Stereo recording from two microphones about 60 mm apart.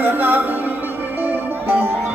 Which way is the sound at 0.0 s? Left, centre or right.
Right.